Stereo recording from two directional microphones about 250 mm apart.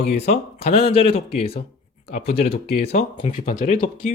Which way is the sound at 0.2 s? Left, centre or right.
Left.